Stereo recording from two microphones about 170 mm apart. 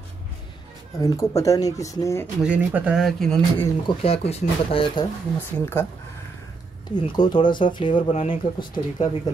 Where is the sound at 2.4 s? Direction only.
5° right (ahead or behind).